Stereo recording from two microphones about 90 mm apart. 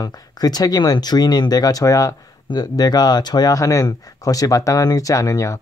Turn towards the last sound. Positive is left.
turn(degrees=40)  # may be behind; listen again after turning